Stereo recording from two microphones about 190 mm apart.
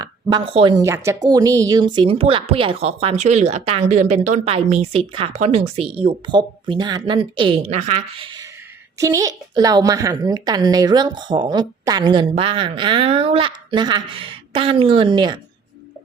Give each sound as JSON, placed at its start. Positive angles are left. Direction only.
{"t": 0.0, "sound": "a woman's voice", "side_deg": -20}